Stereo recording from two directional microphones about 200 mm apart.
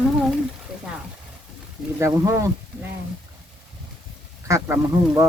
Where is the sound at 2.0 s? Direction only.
15° right (ahead or behind).